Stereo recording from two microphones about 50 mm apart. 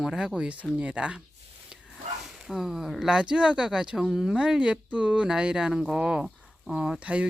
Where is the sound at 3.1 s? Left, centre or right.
Right.